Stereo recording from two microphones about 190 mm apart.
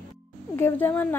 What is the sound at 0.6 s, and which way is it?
Speech, 10° left (ahead or behind).